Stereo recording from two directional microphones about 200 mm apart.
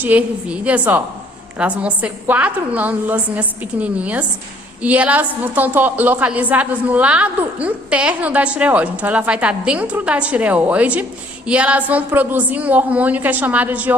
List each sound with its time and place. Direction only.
0.0 s a woman's voice: 10° right (ahead or behind)